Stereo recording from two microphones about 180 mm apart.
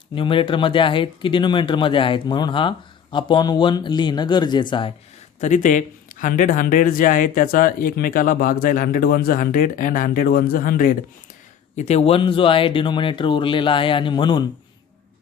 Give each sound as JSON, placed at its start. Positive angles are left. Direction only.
{"t": 0.1, "sound": "speech", "side_deg": 30}
{"t": 5.4, "sound": "speech", "side_deg": 45}
{"t": 11.8, "sound": "speech", "side_deg": 35}